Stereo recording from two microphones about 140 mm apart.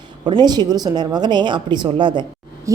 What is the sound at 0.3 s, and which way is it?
A woman's voice, 30° right (ahead or behind).